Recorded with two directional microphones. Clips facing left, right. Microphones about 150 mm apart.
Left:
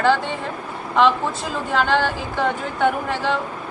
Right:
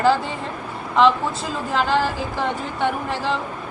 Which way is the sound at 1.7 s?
Centre (ahead or behind).